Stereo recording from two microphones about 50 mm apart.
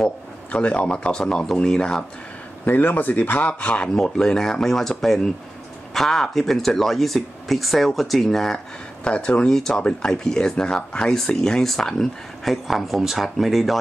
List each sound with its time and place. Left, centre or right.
0.5 s speech: left
2.6 s speech: left; by 8.5 s centre
9.0 s speech: centre